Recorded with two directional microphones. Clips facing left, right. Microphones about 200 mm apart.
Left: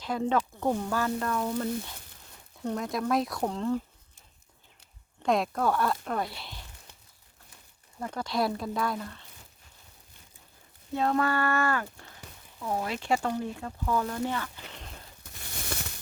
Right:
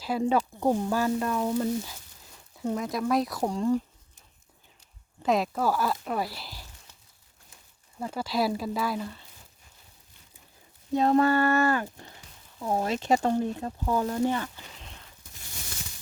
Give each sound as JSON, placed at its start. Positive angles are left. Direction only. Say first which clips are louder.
{"t": 0.0, "sound": "speech", "louder": "right 2 dB", "side_deg": -10}
{"t": 3.4, "sound": "speech", "louder": "right 3 dB", "side_deg": -10}
{"t": 5.2, "sound": "speech", "louder": "right 1 dB", "side_deg": 0}
{"t": 7.9, "sound": "speech", "louder": "right 2 dB", "side_deg": -5}
{"t": 10.9, "sound": "speech", "louder": "right 5 dB", "side_deg": -25}
{"t": 15.3, "sound": "a sound", "louder": "left 7 dB", "side_deg": 65}